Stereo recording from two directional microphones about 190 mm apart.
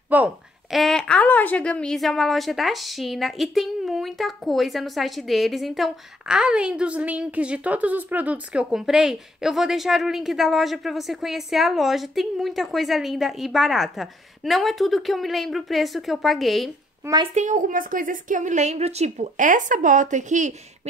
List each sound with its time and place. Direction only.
0.1 s a woman's voice: 5° right (ahead or behind)
17.0 s speech: 20° right (ahead or behind)
17.3 s a woman's voice: 40° right (ahead or behind)